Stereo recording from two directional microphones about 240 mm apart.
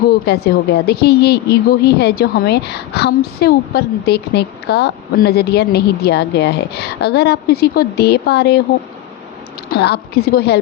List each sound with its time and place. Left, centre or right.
0.3 s a woman's voice: left
9.6 s a woman's voice: left